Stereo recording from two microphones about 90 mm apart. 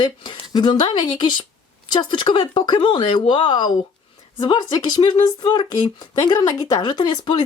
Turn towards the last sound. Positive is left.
turn(degrees=55)  # may be behind; listen again after turning